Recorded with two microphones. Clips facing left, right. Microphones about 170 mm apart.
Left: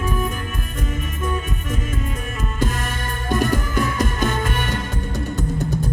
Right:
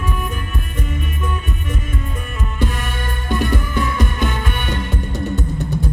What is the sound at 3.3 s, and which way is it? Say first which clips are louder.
Music: even; 45° left (ahead or behind).